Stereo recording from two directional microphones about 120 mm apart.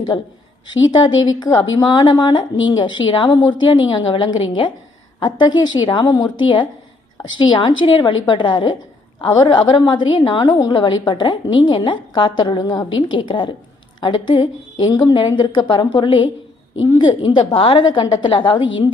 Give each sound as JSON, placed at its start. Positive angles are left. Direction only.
{"t": 0.1, "sound": "a woman's voice", "side_deg": 35}